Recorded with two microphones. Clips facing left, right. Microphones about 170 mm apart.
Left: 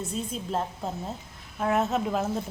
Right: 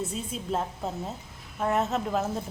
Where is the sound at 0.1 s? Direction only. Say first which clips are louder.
Left 1 dB; centre (ahead or behind).